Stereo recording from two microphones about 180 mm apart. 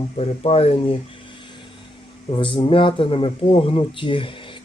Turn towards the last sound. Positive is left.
turn(degrees=30)  # may be behind; listen again after turning